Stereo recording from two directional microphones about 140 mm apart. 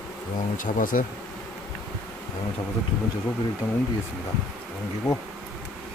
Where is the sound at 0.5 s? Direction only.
70° left (ahead or behind).